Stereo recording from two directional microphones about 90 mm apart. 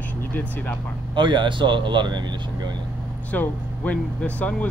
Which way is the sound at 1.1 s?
60° right (ahead or behind).